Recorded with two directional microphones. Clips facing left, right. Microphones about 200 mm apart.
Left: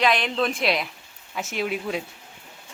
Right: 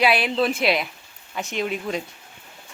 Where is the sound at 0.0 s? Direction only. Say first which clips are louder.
Right 2 dB; 10° right (ahead or behind).